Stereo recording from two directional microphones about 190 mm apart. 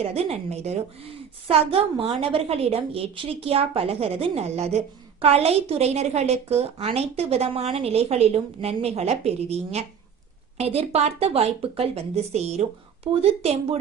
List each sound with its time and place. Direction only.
0.0 s a woman's voice: 35° right (ahead or behind)